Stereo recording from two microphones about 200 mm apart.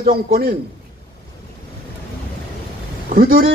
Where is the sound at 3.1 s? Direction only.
45° right (ahead or behind).